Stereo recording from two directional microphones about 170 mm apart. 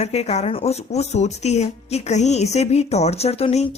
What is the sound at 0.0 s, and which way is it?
Speech, 40° left (ahead or behind).